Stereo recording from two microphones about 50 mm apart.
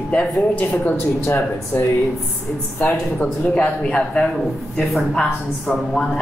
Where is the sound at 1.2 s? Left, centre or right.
Left.